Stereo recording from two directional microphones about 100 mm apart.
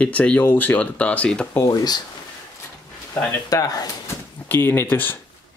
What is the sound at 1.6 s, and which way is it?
Speech, 45° left (ahead or behind).